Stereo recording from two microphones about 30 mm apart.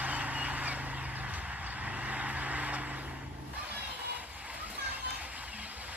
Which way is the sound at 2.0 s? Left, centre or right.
Right.